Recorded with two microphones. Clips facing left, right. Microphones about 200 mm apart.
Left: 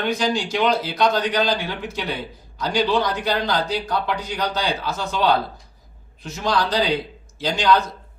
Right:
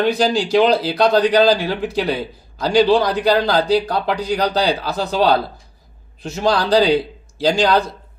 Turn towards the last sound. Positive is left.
turn(degrees=-35)  # may be behind; listen again after turning